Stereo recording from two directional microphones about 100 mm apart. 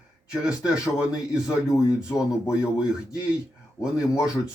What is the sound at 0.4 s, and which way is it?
Speech, 10° right (ahead or behind).